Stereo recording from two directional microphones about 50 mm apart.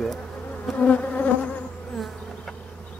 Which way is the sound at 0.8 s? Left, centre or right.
Left.